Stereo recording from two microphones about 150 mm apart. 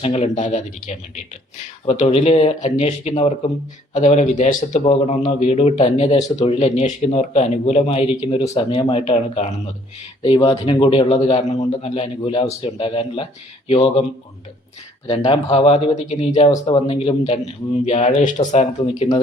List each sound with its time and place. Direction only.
0.0 s a man's voice: 45° left (ahead or behind)
11.2 s a man's voice: 45° left (ahead or behind)
15.0 s a man's voice: 35° left (ahead or behind)
16.6 s a man's voice: 40° left (ahead or behind)